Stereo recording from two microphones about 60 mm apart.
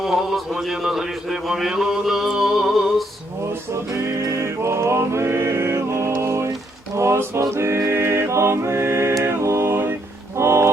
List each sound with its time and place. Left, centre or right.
0.0 s a man's voice: centre
3.9 s music: right
6.9 s a sound: right
7.5 s music: right
9.4 s a sound: right
10.3 s music: right